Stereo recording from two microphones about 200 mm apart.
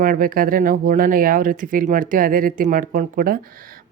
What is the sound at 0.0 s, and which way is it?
Speech, 45° right (ahead or behind).